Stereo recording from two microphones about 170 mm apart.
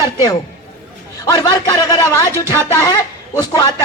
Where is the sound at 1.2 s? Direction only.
20° left (ahead or behind).